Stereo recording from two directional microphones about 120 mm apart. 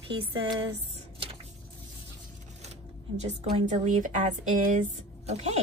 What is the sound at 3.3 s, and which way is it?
Speech, 75° right (ahead or behind).